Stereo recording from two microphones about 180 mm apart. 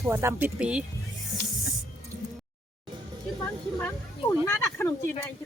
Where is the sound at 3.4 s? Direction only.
15° left (ahead or behind).